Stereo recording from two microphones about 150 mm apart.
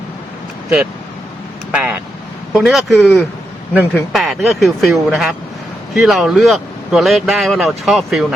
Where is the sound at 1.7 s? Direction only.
10° right (ahead or behind).